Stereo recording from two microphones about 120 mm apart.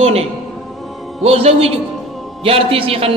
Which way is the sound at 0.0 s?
60° right (ahead or behind).